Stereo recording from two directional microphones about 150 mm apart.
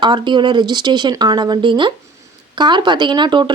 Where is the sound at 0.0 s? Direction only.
30° right (ahead or behind).